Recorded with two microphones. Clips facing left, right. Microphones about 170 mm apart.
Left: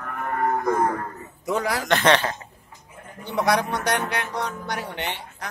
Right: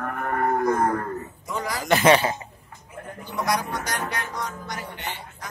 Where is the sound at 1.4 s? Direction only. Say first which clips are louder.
Left 6 dB; 70° left (ahead or behind).